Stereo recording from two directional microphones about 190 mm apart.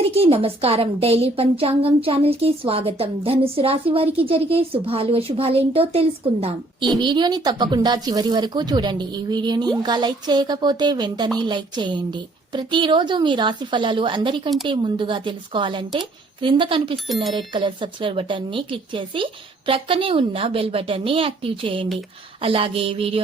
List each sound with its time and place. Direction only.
0.1 s a woman's voice: 30° right (ahead or behind)